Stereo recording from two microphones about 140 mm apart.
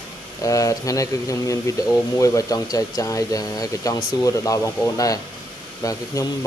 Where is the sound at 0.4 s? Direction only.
25° left (ahead or behind).